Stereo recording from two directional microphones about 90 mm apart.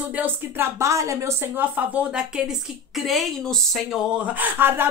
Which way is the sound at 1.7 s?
20° right (ahead or behind).